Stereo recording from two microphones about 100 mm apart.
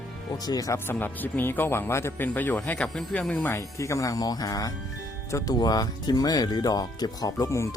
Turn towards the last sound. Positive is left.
turn(degrees=35)  # may be behind; listen again after turning